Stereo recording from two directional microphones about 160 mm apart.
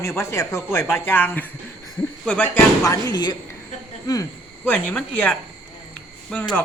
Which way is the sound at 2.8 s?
20° left (ahead or behind).